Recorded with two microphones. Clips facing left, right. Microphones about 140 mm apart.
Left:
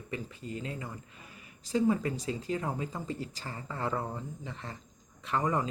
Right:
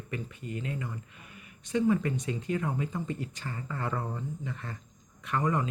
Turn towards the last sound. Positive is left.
turn(degrees=30)  # may be behind; listen again after turning